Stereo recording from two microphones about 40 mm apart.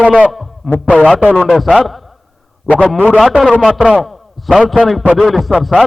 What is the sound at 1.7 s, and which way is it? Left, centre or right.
A man's voice, centre.